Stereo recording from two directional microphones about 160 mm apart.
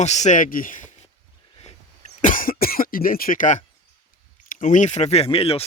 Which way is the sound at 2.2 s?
60° left (ahead or behind).